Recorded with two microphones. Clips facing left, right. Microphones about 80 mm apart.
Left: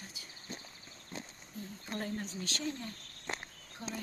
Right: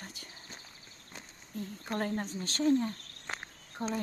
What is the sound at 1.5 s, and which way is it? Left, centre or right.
Speech, right.